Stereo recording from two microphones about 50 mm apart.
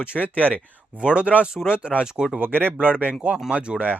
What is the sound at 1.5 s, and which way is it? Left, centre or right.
Speech, centre.